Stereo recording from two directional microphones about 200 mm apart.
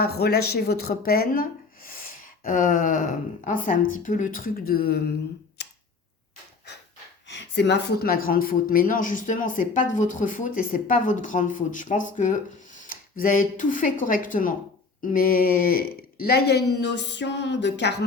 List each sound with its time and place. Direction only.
0.0 s speech: 50° left (ahead or behind)
5.6 s a sound: 55° left (ahead or behind)
7.3 s speech: 60° left (ahead or behind)